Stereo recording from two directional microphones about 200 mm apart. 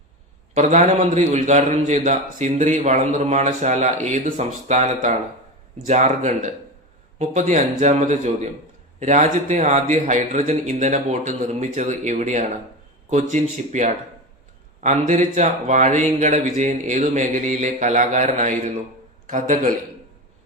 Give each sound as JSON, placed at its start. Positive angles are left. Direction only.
{"t": 0.5, "sound": "a man's voice", "side_deg": -35}